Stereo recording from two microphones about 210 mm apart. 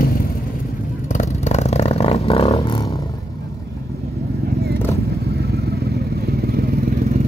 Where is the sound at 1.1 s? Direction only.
35° left (ahead or behind).